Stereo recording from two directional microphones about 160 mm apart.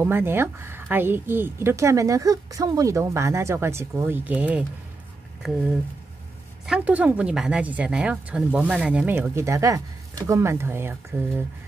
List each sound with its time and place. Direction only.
0.0 s a woman's voice: 15° right (ahead or behind)